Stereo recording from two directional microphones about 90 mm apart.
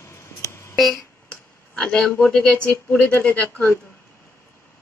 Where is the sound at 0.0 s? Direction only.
30° left (ahead or behind).